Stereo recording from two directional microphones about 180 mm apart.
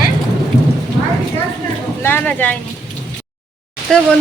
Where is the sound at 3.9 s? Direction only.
5° left (ahead or behind).